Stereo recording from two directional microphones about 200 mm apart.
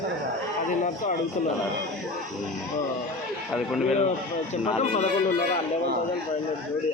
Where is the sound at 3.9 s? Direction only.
35° left (ahead or behind).